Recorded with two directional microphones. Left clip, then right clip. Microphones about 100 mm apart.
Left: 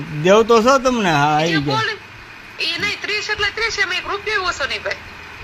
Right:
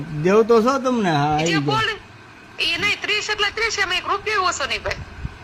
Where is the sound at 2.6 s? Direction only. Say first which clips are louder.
Right 1 dB; 90° right.